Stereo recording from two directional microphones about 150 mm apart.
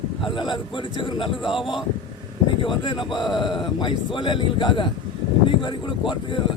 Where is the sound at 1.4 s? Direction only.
Centre (ahead or behind).